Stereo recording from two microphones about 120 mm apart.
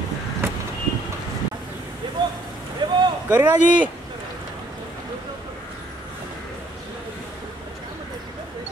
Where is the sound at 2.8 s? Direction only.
40° right (ahead or behind).